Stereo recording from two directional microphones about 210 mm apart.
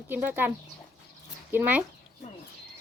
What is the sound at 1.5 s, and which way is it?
Speech, 10° right (ahead or behind).